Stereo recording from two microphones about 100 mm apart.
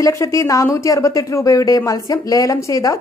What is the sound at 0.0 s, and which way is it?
A woman's voice, 30° left (ahead or behind).